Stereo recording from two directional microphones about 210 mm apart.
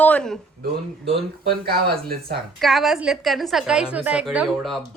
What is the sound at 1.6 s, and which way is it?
Speech, 45° right (ahead or behind).